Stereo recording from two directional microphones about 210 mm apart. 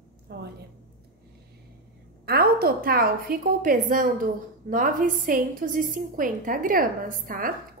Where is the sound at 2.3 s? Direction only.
45° right (ahead or behind).